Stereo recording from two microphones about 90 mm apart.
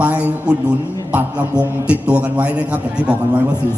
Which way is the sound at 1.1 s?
10° right (ahead or behind).